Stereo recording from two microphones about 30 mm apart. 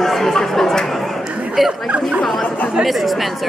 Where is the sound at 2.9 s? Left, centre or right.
Centre.